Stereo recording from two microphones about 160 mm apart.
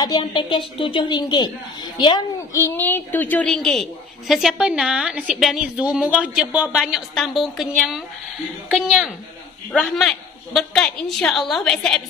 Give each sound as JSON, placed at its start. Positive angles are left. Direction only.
{"t": 0.0, "sound": "a woman's voice", "side_deg": 30}